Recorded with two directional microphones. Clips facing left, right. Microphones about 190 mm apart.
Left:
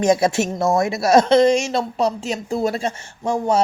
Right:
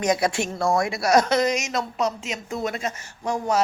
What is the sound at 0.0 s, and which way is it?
Speech, 25° left (ahead or behind).